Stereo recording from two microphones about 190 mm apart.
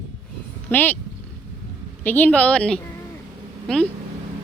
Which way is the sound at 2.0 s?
10° left (ahead or behind).